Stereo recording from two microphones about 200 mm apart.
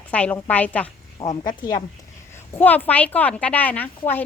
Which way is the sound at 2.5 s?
10° left (ahead or behind).